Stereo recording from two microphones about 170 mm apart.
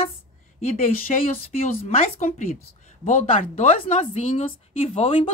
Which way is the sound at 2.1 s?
45° left (ahead or behind).